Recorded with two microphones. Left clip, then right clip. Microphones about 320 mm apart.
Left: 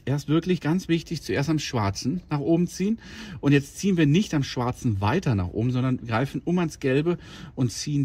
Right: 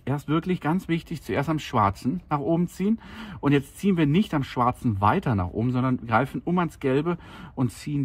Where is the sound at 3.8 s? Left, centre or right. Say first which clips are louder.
Left 1 dB; centre.